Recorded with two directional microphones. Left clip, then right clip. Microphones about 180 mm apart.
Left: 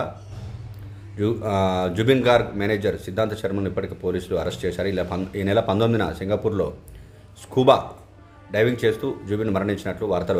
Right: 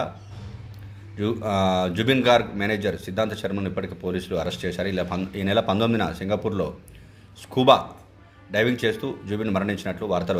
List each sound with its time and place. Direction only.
1.2 s speech: 15° left (ahead or behind)